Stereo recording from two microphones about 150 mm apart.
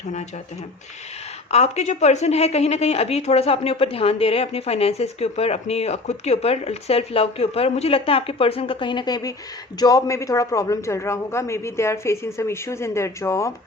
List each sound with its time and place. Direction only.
1.5 s a woman's voice: 45° left (ahead or behind); by 13.5 s 20° left (ahead or behind)